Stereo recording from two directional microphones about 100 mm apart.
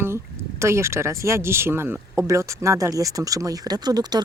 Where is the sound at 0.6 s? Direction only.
25° right (ahead or behind).